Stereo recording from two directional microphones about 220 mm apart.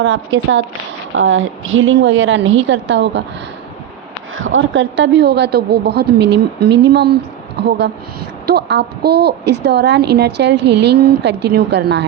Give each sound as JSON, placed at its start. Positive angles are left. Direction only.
{"t": 0.0, "sound": "a woman's voice", "side_deg": -60}
{"t": 4.4, "sound": "a woman's voice", "side_deg": -65}
{"t": 8.4, "sound": "a woman's voice", "side_deg": -50}